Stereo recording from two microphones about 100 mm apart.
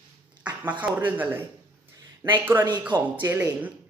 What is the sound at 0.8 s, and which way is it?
A woman's voice, 15° right (ahead or behind).